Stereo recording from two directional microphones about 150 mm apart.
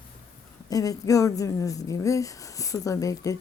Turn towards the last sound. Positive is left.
turn(degrees=20)  # may be behind; listen again after turning